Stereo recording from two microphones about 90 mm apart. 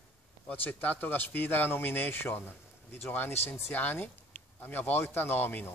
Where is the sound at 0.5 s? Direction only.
15° left (ahead or behind).